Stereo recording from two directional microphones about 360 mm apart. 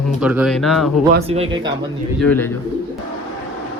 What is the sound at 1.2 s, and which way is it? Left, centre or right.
Speech, centre.